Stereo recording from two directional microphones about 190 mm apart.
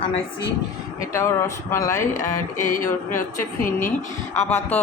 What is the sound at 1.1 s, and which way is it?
Speech, 15° left (ahead or behind).